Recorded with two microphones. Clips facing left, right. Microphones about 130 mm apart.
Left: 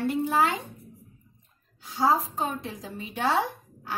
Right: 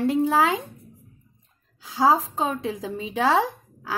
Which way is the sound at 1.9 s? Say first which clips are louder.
Right 4 dB; 90° right.